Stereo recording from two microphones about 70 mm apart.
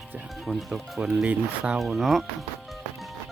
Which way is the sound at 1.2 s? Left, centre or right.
Right.